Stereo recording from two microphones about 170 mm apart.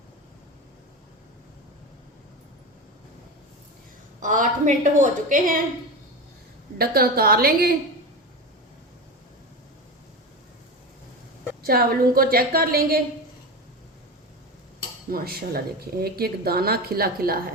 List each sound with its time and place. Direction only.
4.2 s a woman's voice: 50° right (ahead or behind)
6.7 s speech: 60° right (ahead or behind)
11.6 s speech: 65° right (ahead or behind)
15.1 s speech: 65° right (ahead or behind)